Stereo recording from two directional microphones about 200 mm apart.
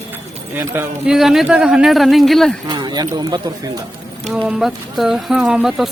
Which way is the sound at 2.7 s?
20° right (ahead or behind).